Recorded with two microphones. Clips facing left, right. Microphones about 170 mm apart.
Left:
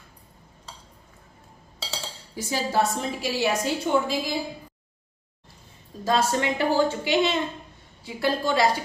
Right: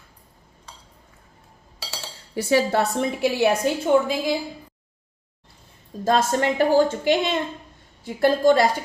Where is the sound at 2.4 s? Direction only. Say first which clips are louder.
Right 5 dB; 65° right (ahead or behind).